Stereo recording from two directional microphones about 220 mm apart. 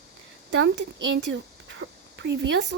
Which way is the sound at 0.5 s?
55° right (ahead or behind).